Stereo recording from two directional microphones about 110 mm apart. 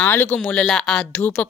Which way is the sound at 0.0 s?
20° left (ahead or behind).